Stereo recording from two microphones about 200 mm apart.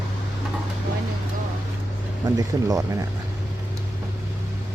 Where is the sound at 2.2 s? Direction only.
15° right (ahead or behind).